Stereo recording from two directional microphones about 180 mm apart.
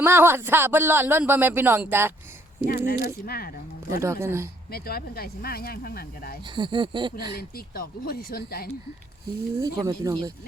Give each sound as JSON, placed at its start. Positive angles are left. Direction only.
{"t": 0.0, "sound": "a man's voice", "side_deg": -15}
{"t": 2.6, "sound": "speech", "side_deg": 55}
{"t": 4.0, "sound": "a man's voice", "side_deg": -15}
{"t": 4.7, "sound": "speech", "side_deg": 60}
{"t": 6.6, "sound": "speech", "side_deg": -25}
{"t": 7.3, "sound": "speech", "side_deg": 55}
{"t": 9.6, "sound": "speech", "side_deg": -20}